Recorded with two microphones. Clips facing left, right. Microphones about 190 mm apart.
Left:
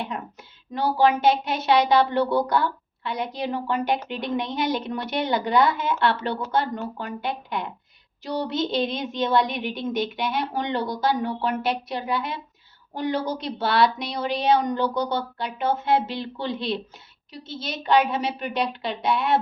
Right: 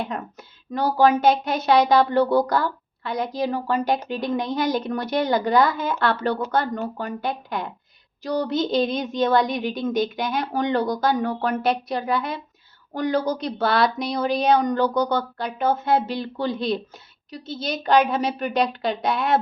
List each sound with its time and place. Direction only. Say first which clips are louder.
0.7 s a woman's voice: right 2 dB; 45° right (ahead or behind)